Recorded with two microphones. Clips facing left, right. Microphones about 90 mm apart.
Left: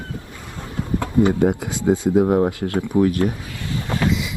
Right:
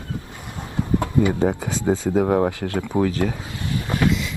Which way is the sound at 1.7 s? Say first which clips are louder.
Left 3 dB; 20° left (ahead or behind).